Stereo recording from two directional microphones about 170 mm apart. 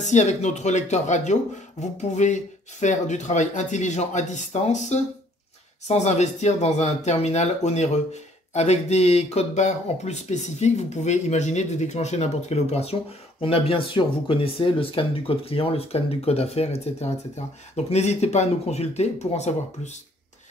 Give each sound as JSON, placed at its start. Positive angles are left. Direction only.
{"t": 0.0, "sound": "speech", "side_deg": 45}